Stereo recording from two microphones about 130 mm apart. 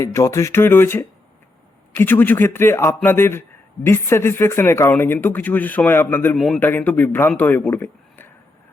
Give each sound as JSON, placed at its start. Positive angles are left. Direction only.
{"t": 0.0, "sound": "speech", "side_deg": 25}